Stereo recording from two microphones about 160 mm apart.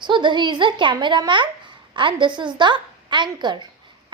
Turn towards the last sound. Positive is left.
turn(degrees=-30)  # may be behind; listen again after turning